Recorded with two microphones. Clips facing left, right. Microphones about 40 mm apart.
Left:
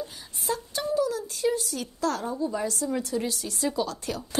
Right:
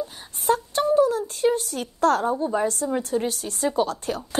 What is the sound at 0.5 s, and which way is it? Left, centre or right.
A woman's voice, right.